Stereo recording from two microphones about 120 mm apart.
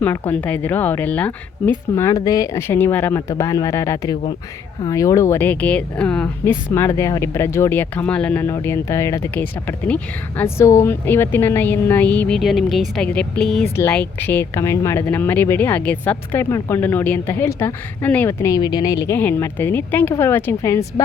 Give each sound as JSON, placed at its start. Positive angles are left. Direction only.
{"t": 0.0, "sound": "speech", "side_deg": 15}
{"t": 6.7, "sound": "speech", "side_deg": 20}
{"t": 12.4, "sound": "speech", "side_deg": 0}
{"t": 13.1, "sound": "speech", "side_deg": 10}
{"t": 13.9, "sound": "speech", "side_deg": 15}
{"t": 18.6, "sound": "speech", "side_deg": 35}